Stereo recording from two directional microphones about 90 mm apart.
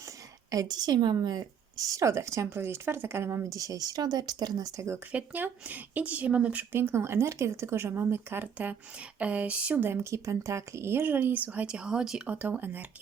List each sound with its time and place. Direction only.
0.5 s a woman's voice: 45° right (ahead or behind)
5.1 s speech: 20° right (ahead or behind)
6.7 s speech: 25° right (ahead or behind)